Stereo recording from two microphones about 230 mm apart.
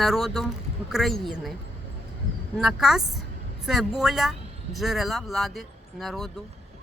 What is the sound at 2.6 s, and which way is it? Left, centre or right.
Speech, centre.